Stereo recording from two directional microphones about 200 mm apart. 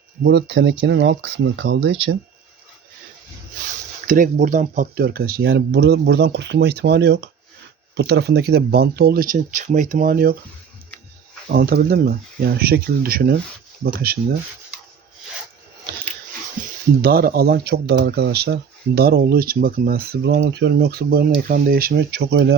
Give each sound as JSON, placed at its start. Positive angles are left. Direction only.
{"t": 0.2, "sound": "speech", "side_deg": -60}
{"t": 4.0, "sound": "speech", "side_deg": -40}
{"t": 11.5, "sound": "speech", "side_deg": -50}
{"t": 16.6, "sound": "a sound", "side_deg": -40}
{"t": 17.0, "sound": "speech", "side_deg": -50}